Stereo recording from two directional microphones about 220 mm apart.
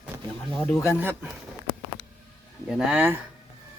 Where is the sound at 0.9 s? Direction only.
10° right (ahead or behind).